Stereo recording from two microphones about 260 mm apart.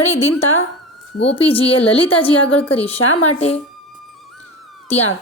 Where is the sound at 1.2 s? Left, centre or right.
Left.